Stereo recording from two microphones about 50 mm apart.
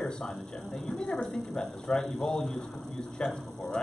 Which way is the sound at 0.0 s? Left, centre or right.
Centre.